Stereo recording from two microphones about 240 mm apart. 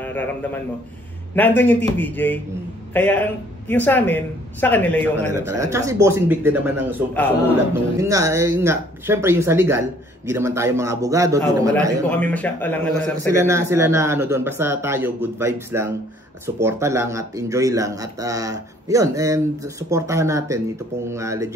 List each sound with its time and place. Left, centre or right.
0.0 s speech: centre
5.1 s a man's voice: right
5.4 s speech: centre
12.1 s speech: centre
13.3 s speech: centre